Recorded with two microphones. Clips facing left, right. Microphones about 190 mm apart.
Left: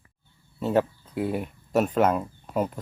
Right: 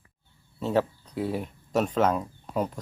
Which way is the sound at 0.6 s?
5° left (ahead or behind).